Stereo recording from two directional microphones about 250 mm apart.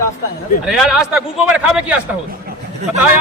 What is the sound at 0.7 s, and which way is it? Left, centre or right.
A man's voice, centre.